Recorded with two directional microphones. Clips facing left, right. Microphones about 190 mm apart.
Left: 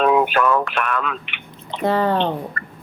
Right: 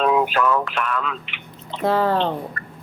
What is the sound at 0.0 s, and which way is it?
Speech, 60° left (ahead or behind).